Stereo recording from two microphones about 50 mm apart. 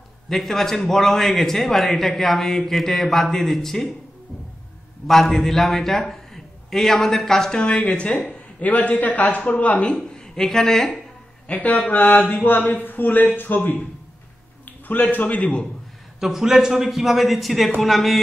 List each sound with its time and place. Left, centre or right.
0.3 s a man's voice: centre
5.0 s a man's voice: centre; by 10.2 s left
10.2 s a woman's voice: centre
11.4 s speech: left
14.9 s speech: left
16.2 s a man's voice: centre